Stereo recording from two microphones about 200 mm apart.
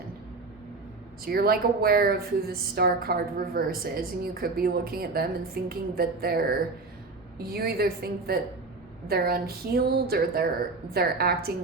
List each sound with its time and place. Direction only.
1.2 s speech: 50° right (ahead or behind)